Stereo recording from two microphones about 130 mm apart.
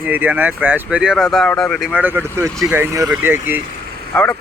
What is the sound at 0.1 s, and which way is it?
Speech, 15° right (ahead or behind).